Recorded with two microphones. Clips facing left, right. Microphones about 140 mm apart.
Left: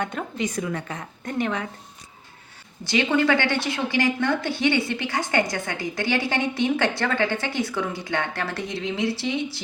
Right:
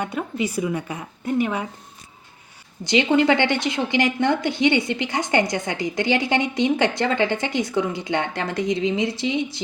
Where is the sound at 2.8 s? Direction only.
20° right (ahead or behind).